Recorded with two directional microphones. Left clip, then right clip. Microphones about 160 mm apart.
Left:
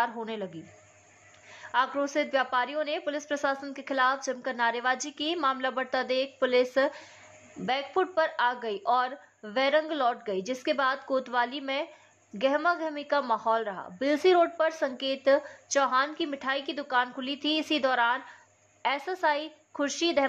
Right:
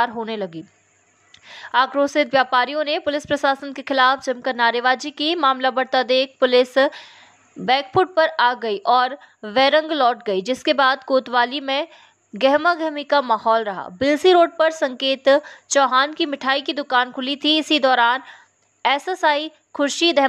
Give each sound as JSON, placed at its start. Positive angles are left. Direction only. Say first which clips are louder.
{"t": 0.0, "sound": "a woman's voice", "louder": "right 9 dB", "side_deg": -30}